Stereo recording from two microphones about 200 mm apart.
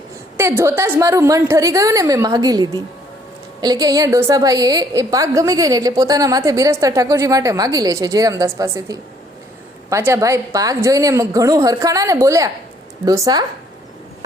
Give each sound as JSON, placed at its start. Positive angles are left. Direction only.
{"t": 0.3, "sound": "a woman's voice", "side_deg": -15}